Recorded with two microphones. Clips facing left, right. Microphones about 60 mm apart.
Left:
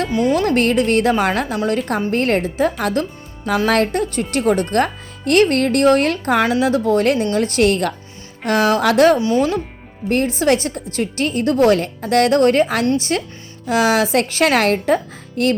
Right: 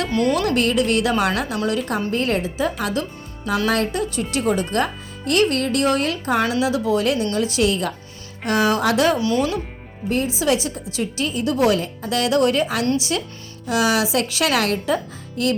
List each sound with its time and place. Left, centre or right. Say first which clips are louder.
0.1 s speech: left 1 dB; centre
0.3 s a woman's voice: left 3 dB; left
8.4 s a woman's voice: left 3 dB; left
9.1 s speech: left 3 dB; left
10.1 s a woman's voice: left 4 dB; left